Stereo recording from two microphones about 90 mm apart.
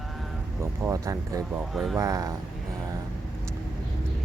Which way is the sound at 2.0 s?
40° right (ahead or behind).